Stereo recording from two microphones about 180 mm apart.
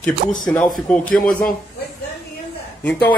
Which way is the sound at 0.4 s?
5° left (ahead or behind).